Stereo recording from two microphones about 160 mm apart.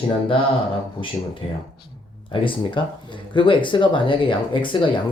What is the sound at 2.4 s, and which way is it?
Speech, 30° left (ahead or behind).